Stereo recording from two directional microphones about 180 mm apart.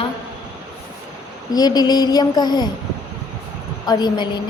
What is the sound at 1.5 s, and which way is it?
A woman's voice, 20° left (ahead or behind).